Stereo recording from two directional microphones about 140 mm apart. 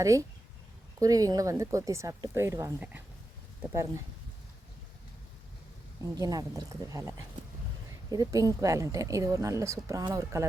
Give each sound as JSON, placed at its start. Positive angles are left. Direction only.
{"t": 0.0, "sound": "speech", "side_deg": -20}
{"t": 6.1, "sound": "speech", "side_deg": -25}